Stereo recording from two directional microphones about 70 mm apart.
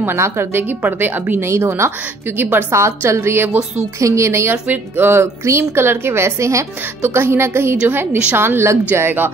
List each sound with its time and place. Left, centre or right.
0.0 s a woman's voice: right
1.4 s speech: right
2.7 s speech: right
4.0 s speech: right